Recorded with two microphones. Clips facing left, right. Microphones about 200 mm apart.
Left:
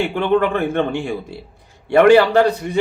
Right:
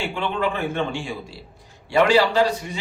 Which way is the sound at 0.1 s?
60° left (ahead or behind).